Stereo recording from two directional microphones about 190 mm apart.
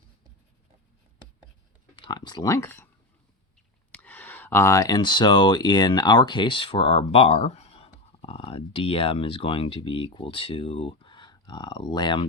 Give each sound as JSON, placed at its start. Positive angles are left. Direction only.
{"t": 2.0, "sound": "speech", "side_deg": 25}
{"t": 3.9, "sound": "speech", "side_deg": 10}